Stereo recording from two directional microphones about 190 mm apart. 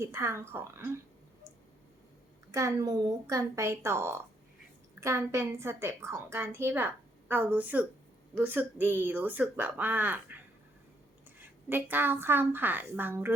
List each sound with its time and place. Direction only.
0.0 s a woman's voice: 15° right (ahead or behind)
2.5 s a woman's voice: 20° right (ahead or behind)